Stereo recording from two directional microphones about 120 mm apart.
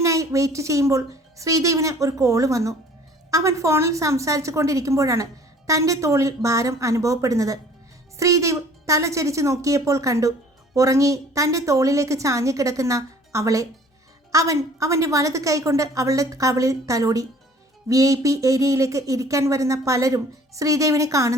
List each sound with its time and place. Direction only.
0.0 s a woman's voice: 25° right (ahead or behind)